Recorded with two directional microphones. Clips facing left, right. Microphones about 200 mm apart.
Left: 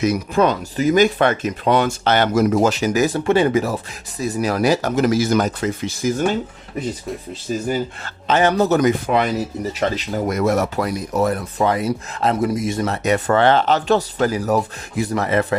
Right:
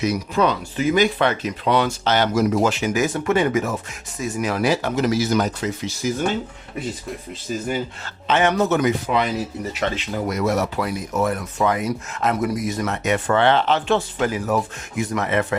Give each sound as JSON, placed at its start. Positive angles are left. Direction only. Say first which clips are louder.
{"t": 0.0, "sound": "speech", "louder": "left 3 dB", "side_deg": 50}
{"t": 8.3, "sound": "speech", "louder": "left 2 dB", "side_deg": 35}
{"t": 9.0, "sound": "speech", "louder": "left 3 dB", "side_deg": 50}
{"t": 9.8, "sound": "speech", "louder": "left 3 dB", "side_deg": 40}